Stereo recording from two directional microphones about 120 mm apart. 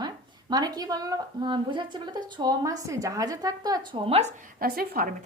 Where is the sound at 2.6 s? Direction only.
30° right (ahead or behind).